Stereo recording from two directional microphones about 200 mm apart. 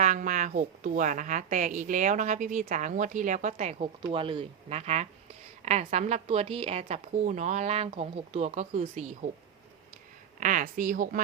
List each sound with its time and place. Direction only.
0.0 s a woman's voice: 40° right (ahead or behind)
10.4 s a woman's voice: 40° right (ahead or behind)